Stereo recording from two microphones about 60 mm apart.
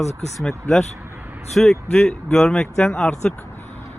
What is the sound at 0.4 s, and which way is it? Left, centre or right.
Speech, centre.